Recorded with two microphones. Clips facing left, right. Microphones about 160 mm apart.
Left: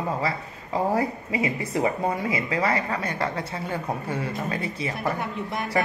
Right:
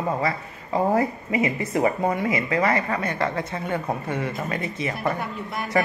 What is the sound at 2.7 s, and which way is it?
Speech, 30° right (ahead or behind).